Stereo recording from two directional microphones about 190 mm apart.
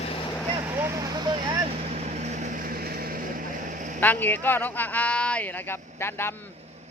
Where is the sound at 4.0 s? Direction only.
10° left (ahead or behind).